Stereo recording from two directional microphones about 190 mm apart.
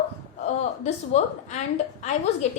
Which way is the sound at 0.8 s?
35° left (ahead or behind).